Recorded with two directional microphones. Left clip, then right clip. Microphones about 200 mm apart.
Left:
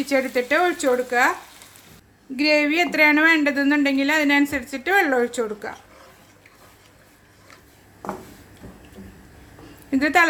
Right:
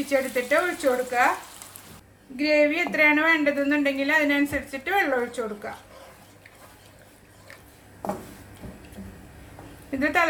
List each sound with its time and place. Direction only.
0.1 s speech: 45° left (ahead or behind)
2.3 s speech: 50° left (ahead or behind)
9.9 s speech: 50° left (ahead or behind)